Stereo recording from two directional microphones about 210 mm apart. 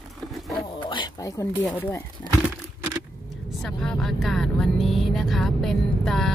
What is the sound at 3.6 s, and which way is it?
Vehicle, centre (ahead or behind).